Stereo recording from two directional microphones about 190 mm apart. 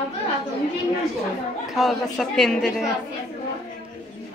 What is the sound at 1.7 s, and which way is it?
Speech, centre (ahead or behind).